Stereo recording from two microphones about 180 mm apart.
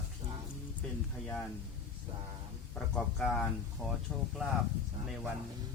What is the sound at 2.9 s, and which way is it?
Speech, 5° left (ahead or behind).